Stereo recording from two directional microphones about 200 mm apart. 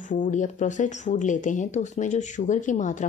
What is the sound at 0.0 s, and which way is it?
A woman's voice, 40° left (ahead or behind).